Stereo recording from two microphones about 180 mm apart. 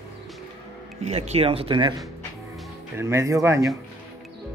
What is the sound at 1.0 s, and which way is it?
Speech, 40° right (ahead or behind).